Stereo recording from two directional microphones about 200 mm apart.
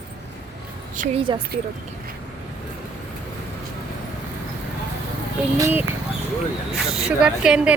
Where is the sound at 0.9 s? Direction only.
40° right (ahead or behind).